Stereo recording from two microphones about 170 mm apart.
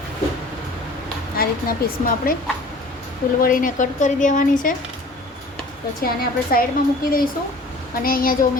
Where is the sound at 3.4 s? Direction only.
55° left (ahead or behind).